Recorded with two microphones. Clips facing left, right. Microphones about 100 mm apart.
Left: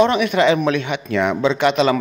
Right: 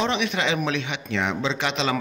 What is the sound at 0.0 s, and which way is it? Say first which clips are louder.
A man's voice: left 9 dB; 55° left (ahead or behind).